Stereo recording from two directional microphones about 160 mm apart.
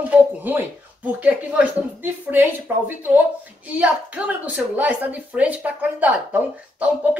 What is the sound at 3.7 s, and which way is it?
A woman's voice, 10° right (ahead or behind).